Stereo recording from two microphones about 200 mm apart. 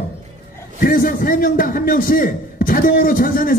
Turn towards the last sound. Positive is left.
turn(degrees=45)  # may be behind; listen again after turning